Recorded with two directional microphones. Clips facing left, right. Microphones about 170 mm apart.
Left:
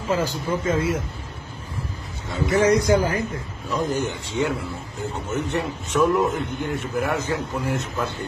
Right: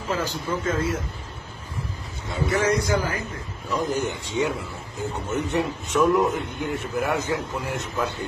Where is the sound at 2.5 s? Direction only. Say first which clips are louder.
Left 5 dB; 15° left (ahead or behind).